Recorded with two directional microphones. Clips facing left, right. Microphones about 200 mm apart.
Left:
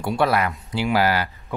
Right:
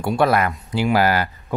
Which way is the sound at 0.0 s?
45° right (ahead or behind).